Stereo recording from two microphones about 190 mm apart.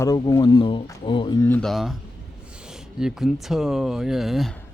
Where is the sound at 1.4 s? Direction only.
10° left (ahead or behind).